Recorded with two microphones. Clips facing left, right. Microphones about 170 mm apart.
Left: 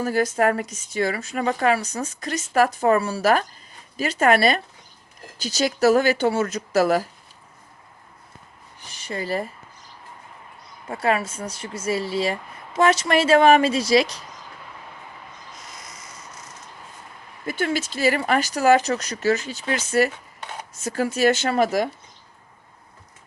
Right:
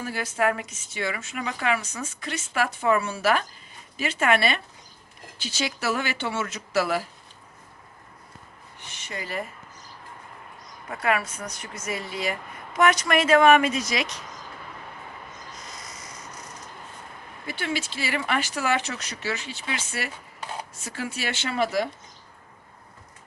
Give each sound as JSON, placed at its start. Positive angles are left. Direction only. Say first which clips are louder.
{"t": 0.0, "sound": "a woman's voice", "louder": "left 6 dB", "side_deg": 40}
{"t": 8.8, "sound": "speech", "louder": "left 6 dB", "side_deg": 35}
{"t": 10.8, "sound": "a woman's voice", "louder": "left 3 dB", "side_deg": 30}
{"t": 17.4, "sound": "a woman's voice", "louder": "left 6 dB", "side_deg": 45}